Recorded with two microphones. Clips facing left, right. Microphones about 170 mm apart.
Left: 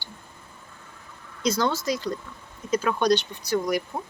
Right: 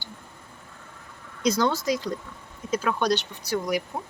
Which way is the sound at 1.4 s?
15° right (ahead or behind).